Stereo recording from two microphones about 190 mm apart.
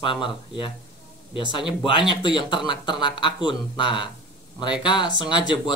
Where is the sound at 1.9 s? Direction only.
25° left (ahead or behind).